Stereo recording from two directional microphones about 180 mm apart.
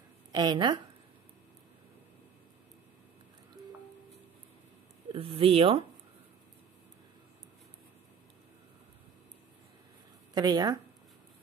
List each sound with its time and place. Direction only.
0.3 s a woman's voice: 25° right (ahead or behind)
5.1 s speech: 30° right (ahead or behind)
10.3 s a woman's voice: 20° right (ahead or behind)